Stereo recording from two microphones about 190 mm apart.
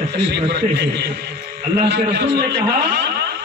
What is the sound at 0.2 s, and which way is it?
A man's voice, 60° right (ahead or behind).